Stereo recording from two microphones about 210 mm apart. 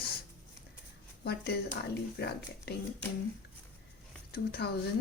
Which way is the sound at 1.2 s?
50° left (ahead or behind).